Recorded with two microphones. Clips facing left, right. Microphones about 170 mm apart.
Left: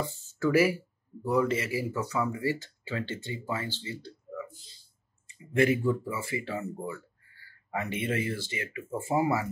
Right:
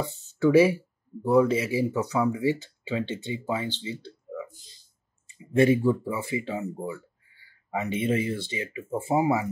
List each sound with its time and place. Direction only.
0.0 s speech: 25° right (ahead or behind)
5.6 s speech: 25° right (ahead or behind)